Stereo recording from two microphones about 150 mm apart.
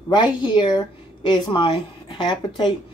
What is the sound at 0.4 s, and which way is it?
Speech, 30° left (ahead or behind).